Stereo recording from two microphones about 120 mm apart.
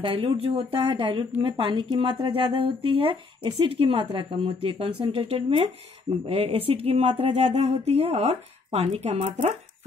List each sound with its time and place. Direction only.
0.0 s speech: 45° right (ahead or behind); by 9.6 s 65° right (ahead or behind)